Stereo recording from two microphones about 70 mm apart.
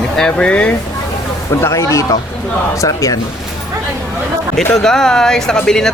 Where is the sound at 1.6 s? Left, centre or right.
Left.